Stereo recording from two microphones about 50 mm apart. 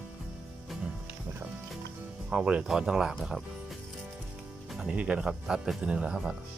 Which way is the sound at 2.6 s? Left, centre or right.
Centre.